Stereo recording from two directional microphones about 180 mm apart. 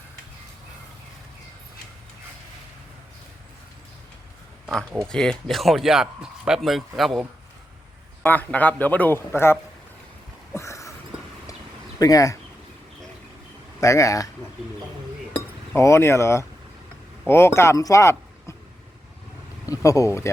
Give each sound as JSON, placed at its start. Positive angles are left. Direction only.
{"t": 4.6, "sound": "a man's voice", "side_deg": 0}
{"t": 10.5, "sound": "a sound", "side_deg": 15}
{"t": 11.9, "sound": "speech", "side_deg": 20}
{"t": 13.8, "sound": "a man's voice", "side_deg": 15}
{"t": 15.7, "sound": "a man's voice", "side_deg": 15}
{"t": 19.6, "sound": "speech", "side_deg": 20}